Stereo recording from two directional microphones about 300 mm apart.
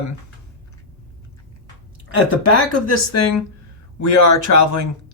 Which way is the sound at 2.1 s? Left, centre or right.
Left.